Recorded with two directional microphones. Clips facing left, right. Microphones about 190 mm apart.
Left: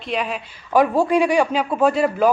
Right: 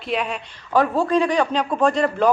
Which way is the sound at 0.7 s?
10° left (ahead or behind).